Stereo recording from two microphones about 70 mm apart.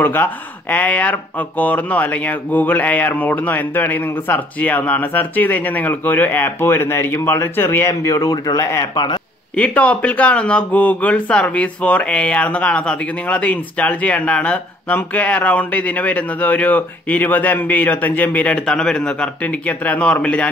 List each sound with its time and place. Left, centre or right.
0.0 s speech: left
7.9 s speech: left
9.6 s speech: centre
19.4 s speech: left